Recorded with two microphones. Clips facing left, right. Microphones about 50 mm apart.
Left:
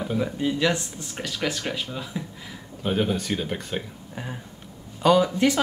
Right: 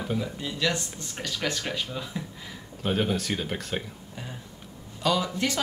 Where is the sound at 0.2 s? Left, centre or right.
Left; by 3.8 s centre.